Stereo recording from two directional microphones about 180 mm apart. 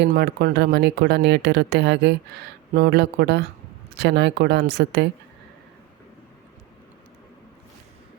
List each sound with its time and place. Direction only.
0.0 s speech: 65° right (ahead or behind)